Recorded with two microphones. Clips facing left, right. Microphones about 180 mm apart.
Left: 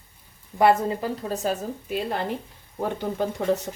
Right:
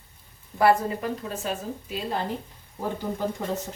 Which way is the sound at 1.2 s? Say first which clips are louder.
Left 4 dB; 40° left (ahead or behind).